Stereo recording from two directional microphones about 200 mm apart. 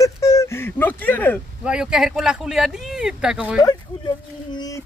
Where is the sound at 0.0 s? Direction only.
15° left (ahead or behind).